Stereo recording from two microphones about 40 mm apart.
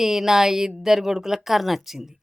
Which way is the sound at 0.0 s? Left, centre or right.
Centre.